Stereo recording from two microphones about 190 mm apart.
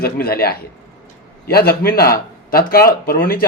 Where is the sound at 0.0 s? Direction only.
55° left (ahead or behind).